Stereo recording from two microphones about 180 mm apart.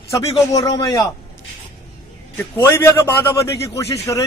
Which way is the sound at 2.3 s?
10° left (ahead or behind).